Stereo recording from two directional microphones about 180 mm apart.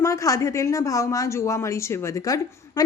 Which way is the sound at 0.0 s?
15° left (ahead or behind).